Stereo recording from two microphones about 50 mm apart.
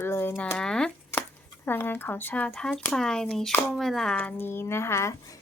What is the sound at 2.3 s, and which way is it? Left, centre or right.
Speech, left.